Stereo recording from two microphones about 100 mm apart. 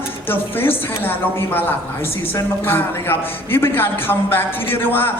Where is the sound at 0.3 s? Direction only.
20° left (ahead or behind).